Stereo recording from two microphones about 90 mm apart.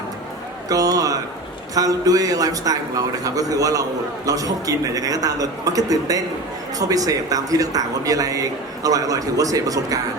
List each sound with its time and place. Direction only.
0.7 s speech: 40° right (ahead or behind)